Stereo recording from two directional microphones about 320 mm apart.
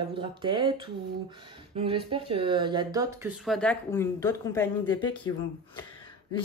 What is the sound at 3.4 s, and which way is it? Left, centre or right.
Speech, centre.